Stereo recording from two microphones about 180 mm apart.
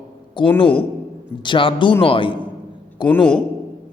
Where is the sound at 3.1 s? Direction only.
5° left (ahead or behind).